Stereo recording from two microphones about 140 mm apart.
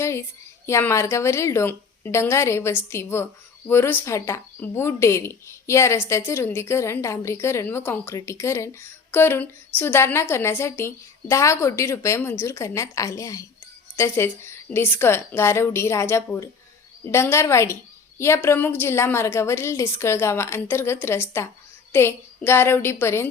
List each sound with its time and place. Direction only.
0.0 s a woman's voice: 20° left (ahead or behind)